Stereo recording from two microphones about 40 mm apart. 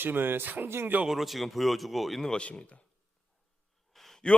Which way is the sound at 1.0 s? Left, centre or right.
Centre.